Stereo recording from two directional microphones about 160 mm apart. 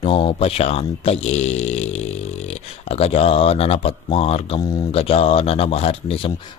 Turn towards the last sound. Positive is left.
turn(degrees=35)  # may be behind; listen again after turning